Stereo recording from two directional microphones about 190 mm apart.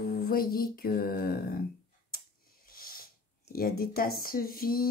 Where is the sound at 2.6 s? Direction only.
50° left (ahead or behind).